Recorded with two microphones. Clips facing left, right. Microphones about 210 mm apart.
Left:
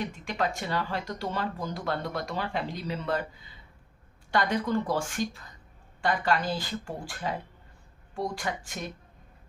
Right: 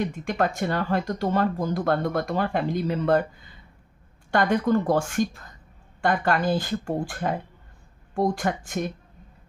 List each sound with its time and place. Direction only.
0.0 s speech: 50° right (ahead or behind)